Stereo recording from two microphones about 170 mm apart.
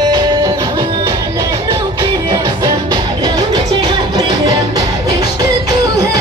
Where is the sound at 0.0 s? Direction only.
25° right (ahead or behind).